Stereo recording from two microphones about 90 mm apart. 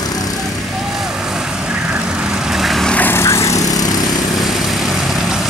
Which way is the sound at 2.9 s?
20° left (ahead or behind).